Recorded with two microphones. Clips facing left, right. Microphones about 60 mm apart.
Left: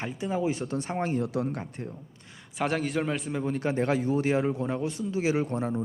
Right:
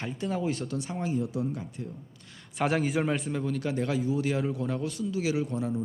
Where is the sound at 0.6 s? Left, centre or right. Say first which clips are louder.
Left 3 dB; left.